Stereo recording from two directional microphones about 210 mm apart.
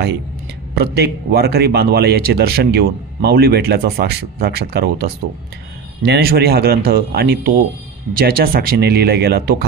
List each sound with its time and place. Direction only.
0.7 s a man's voice: 50° right (ahead or behind)